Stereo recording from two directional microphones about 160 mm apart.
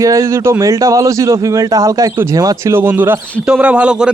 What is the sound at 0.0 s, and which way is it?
A man's voice, 20° right (ahead or behind).